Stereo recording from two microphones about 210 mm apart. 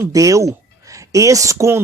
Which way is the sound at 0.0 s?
15° right (ahead or behind).